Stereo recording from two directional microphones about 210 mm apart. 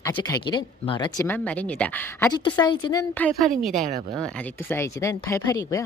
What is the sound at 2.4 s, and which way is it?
Speech, 20° left (ahead or behind).